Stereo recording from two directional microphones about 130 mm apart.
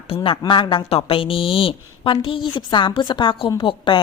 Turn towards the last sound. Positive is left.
turn(degrees=40)  # may be behind; listen again after turning